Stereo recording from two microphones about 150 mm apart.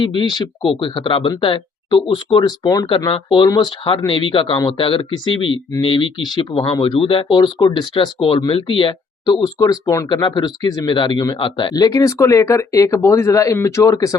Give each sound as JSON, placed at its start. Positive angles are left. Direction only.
{"t": 0.0, "sound": "speech", "side_deg": 30}